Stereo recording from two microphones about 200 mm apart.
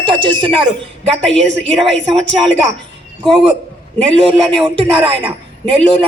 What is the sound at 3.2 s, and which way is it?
A woman's voice, 25° right (ahead or behind).